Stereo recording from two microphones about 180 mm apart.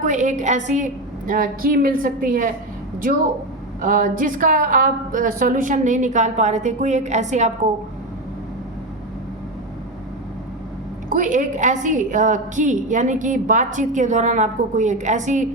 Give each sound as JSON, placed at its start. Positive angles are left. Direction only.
{"t": 0.0, "sound": "a woman's voice", "side_deg": -45}
{"t": 3.8, "sound": "a woman's voice", "side_deg": -50}
{"t": 11.1, "sound": "a woman's voice", "side_deg": -45}